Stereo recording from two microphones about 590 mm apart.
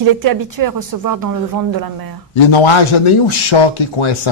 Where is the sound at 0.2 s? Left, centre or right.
Right.